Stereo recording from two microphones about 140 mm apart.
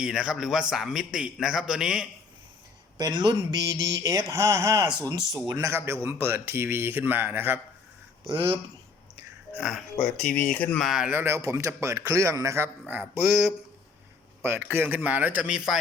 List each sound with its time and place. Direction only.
0.0 s a man's voice: 5° right (ahead or behind)
3.0 s a man's voice: 30° right (ahead or behind); by 7.6 s 15° right (ahead or behind)
9.6 s speech: centre (ahead or behind)
10.8 s a man's voice: 5° right (ahead or behind)
11.1 s a man's voice: 15° right (ahead or behind)
14.4 s speech: 15° right (ahead or behind)